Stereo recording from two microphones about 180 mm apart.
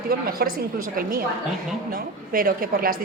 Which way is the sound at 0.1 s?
55° right (ahead or behind).